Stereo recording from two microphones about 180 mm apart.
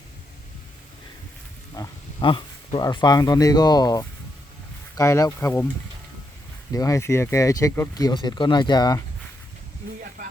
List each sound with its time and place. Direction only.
1.7 s speech: 25° left (ahead or behind)
6.7 s speech: 20° left (ahead or behind)